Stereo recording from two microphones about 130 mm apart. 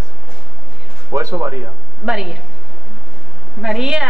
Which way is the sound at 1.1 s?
25° right (ahead or behind).